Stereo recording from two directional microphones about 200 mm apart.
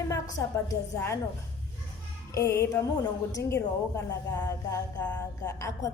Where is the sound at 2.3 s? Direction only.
15° left (ahead or behind).